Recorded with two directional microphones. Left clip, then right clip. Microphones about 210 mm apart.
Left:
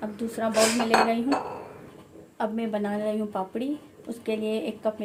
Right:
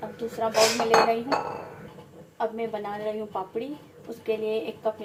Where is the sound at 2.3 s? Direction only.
50° left (ahead or behind).